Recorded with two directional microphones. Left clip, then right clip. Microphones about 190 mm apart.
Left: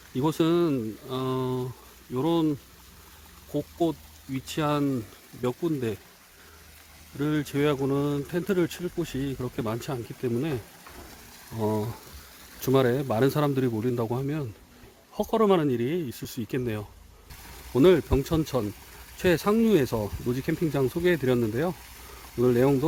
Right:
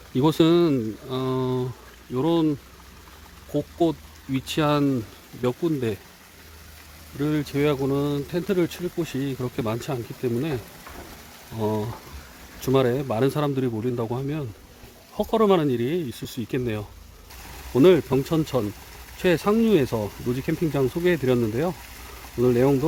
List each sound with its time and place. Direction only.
0.1 s speech: 5° right (ahead or behind)
2.1 s speech: 15° left (ahead or behind)
4.3 s speech: 5° right (ahead or behind); by 6.0 s 15° left (ahead or behind)
7.2 s speech: 25° left (ahead or behind)
15.1 s speech: 20° left (ahead or behind)